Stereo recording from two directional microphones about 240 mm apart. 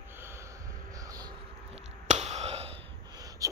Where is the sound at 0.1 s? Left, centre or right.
Centre.